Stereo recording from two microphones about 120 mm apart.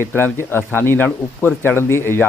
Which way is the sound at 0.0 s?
20° left (ahead or behind).